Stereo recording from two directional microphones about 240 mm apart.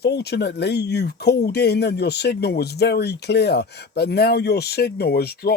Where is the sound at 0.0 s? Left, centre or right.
Left.